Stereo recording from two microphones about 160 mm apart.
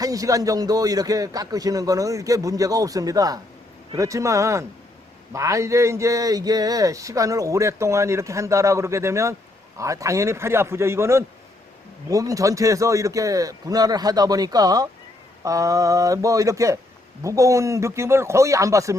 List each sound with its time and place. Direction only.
0.0 s a man's voice: 20° right (ahead or behind)